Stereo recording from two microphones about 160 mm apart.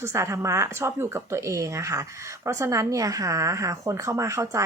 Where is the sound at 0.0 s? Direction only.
15° right (ahead or behind).